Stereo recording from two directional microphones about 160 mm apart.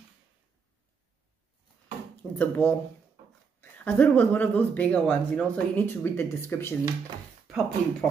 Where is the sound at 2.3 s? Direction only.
10° left (ahead or behind).